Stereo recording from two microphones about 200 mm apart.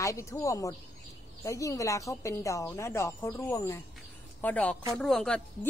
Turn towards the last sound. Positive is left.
turn(degrees=5)  # may be behind; listen again after turning